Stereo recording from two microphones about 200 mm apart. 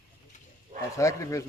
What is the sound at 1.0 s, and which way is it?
Speech, 15° left (ahead or behind).